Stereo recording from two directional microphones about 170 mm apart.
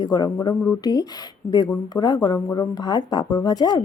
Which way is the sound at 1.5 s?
25° left (ahead or behind).